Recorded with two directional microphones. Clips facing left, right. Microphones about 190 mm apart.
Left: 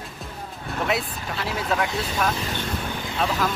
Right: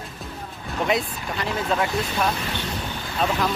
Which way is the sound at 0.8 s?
Centre (ahead or behind).